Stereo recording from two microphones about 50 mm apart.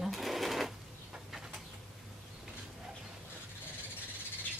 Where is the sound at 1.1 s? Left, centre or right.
Centre.